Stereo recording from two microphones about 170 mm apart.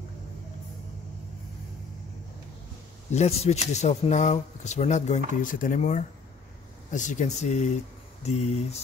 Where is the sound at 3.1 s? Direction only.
40° left (ahead or behind).